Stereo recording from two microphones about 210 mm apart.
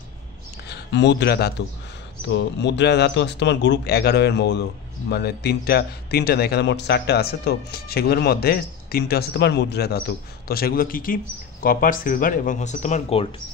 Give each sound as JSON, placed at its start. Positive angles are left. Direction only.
{"t": 0.7, "sound": "a man's voice", "side_deg": 55}